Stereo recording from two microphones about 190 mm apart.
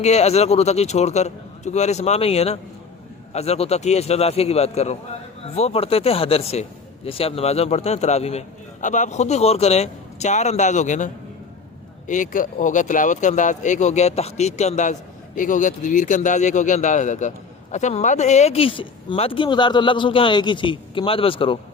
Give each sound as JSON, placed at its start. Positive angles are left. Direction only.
{"t": 0.0, "sound": "speech", "side_deg": 35}